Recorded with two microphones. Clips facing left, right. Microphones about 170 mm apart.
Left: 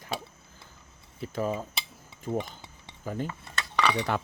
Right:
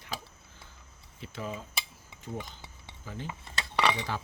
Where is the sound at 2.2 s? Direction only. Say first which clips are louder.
Left 8 dB; 50° left (ahead or behind).